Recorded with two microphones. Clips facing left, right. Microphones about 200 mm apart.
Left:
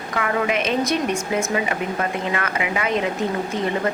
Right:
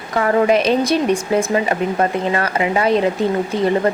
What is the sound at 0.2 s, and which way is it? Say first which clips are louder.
Speech: right 8 dB; 35° right (ahead or behind).